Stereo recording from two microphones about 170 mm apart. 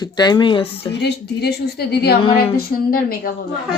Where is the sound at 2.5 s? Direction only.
60° left (ahead or behind).